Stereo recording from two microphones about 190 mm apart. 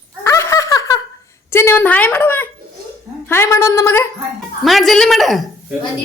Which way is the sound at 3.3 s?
15° left (ahead or behind).